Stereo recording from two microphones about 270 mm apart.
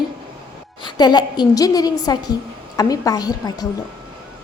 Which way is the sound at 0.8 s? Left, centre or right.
Centre.